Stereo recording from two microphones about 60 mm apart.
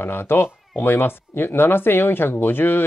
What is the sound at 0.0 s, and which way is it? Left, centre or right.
Speech, left.